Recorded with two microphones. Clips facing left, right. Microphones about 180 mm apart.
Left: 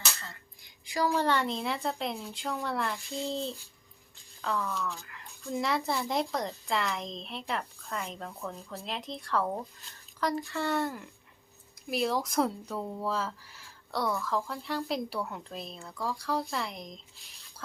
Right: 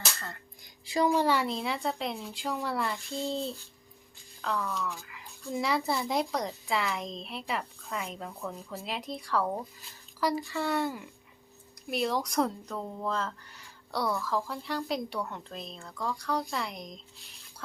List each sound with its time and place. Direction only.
0.9 s a woman's voice: 25° right (ahead or behind)
1.1 s speech: 10° right (ahead or behind)
4.4 s speech: centre (ahead or behind)